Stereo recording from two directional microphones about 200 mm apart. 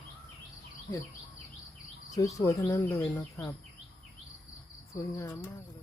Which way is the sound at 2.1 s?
15° left (ahead or behind).